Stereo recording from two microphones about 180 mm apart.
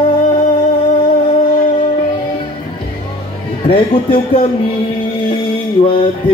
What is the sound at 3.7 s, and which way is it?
Speech, 30° left (ahead or behind).